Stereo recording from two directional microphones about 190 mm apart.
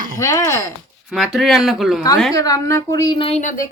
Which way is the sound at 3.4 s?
45° left (ahead or behind).